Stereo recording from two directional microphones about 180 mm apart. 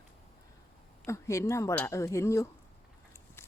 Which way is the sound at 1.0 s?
15° left (ahead or behind).